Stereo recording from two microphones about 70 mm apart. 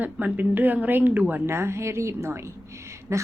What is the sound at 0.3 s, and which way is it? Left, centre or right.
Speech, right.